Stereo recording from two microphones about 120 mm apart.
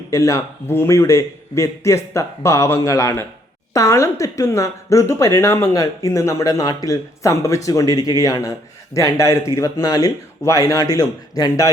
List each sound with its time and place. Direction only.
0.1 s speech: 25° left (ahead or behind)